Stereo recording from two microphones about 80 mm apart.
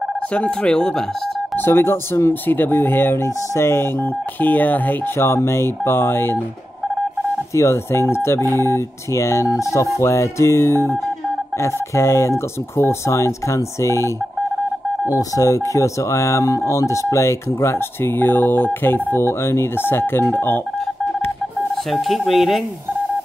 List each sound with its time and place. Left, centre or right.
0.3 s speech: centre
1.6 s speech: left
7.5 s speech: left
15.1 s speech: left
21.9 s speech: centre